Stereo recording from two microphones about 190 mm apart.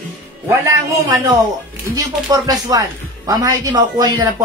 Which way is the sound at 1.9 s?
20° right (ahead or behind).